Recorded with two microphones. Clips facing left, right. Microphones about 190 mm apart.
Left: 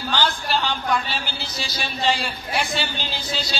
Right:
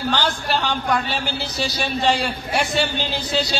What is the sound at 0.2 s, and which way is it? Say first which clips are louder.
Speech: right 1 dB; 50° right (ahead or behind).